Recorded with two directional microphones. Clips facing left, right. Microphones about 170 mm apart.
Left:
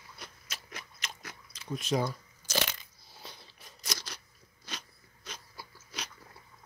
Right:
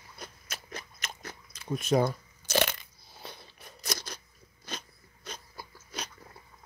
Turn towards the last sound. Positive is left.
turn(degrees=-50)  # may be behind; listen again after turning